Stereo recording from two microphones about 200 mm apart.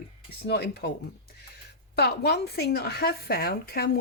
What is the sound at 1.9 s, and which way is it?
Speech, 55° left (ahead or behind).